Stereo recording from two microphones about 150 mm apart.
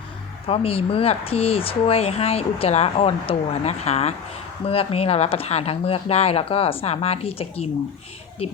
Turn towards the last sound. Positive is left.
turn(degrees=40)  # may be behind; listen again after turning